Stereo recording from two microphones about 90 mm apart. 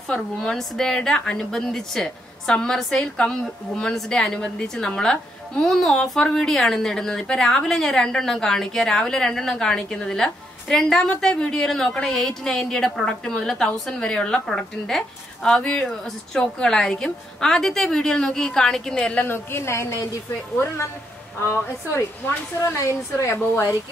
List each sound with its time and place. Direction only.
0.1 s a woman's voice: 5° left (ahead or behind)
19.2 s a woman's voice: 25° left (ahead or behind)
22.8 s a woman's voice: 30° left (ahead or behind)